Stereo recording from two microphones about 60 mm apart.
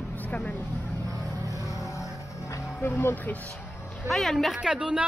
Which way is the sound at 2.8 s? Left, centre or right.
Left.